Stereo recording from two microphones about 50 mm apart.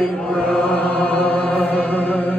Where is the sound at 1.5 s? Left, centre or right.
Left.